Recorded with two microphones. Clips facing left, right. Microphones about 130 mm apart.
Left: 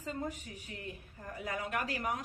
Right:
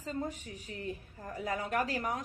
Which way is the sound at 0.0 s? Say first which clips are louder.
Right 2 dB; 35° right (ahead or behind).